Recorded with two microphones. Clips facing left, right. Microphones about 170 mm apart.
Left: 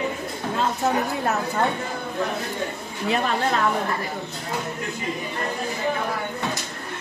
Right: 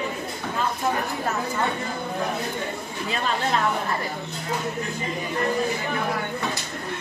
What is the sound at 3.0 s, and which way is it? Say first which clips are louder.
Speech: left 5 dB; 65° left (ahead or behind).